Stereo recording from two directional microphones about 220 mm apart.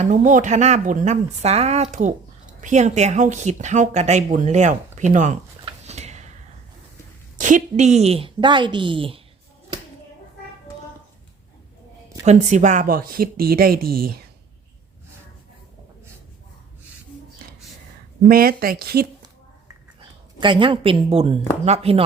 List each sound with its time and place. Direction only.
0.0 s speech: 35° right (ahead or behind)
7.3 s a woman's voice: 35° right (ahead or behind)
12.2 s speech: 30° right (ahead or behind)
18.3 s speech: 40° right (ahead or behind)
20.4 s a woman's voice: 20° right (ahead or behind)